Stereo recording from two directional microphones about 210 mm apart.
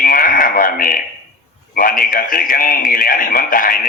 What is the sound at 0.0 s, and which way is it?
Radio, 45° left (ahead or behind).